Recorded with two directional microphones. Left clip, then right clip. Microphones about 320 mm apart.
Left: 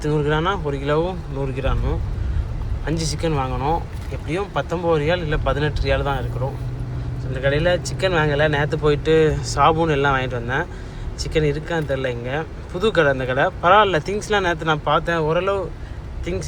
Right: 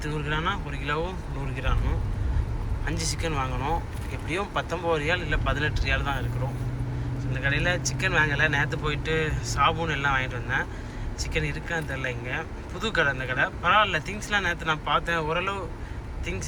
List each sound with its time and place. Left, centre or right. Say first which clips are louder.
0.0 s speech: left 8 dB; centre
2.8 s speech: left 7 dB; centre
7.4 s speech: left 7 dB; centre